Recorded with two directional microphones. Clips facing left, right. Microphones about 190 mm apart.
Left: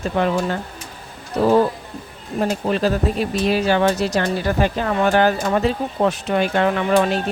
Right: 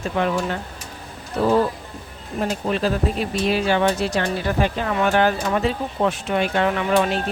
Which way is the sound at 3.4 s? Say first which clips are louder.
Left 2 dB; 40° left (ahead or behind).